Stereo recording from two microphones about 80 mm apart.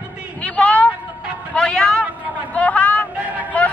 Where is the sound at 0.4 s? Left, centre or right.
Centre.